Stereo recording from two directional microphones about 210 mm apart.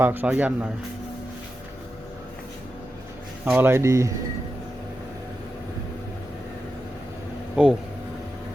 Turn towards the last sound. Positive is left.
turn(degrees=-5)  # may be behind; listen again after turning